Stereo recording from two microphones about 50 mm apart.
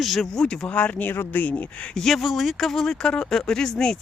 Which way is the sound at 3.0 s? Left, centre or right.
Centre.